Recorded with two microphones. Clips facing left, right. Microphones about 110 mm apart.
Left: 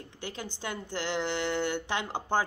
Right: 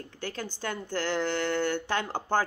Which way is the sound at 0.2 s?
15° left (ahead or behind).